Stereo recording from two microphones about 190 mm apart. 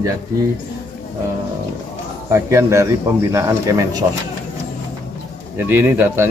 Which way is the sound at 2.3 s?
15° right (ahead or behind).